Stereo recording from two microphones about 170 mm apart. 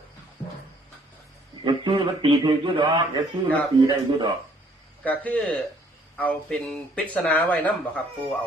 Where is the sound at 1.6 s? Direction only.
30° right (ahead or behind).